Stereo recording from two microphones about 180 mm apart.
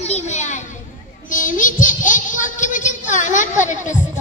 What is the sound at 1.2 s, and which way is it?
Child singing, 45° left (ahead or behind).